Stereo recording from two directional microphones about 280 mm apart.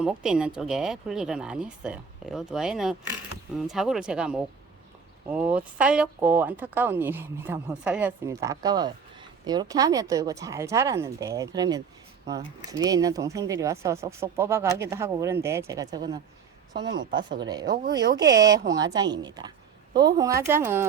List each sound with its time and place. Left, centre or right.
0.0 s speech: centre
16.8 s speech: right
17.5 s speech: centre